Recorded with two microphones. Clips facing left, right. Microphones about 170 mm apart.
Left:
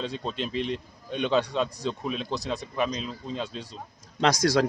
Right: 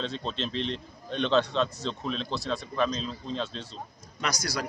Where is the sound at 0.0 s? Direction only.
10° left (ahead or behind).